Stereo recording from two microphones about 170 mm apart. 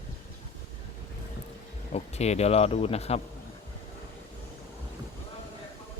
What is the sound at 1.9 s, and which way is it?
A man's voice, 40° left (ahead or behind).